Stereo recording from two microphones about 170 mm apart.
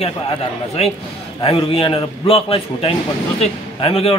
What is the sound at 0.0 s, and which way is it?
A man's voice, 35° left (ahead or behind).